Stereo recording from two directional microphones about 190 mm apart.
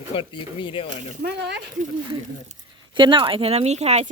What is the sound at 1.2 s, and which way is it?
Speech, 65° right (ahead or behind).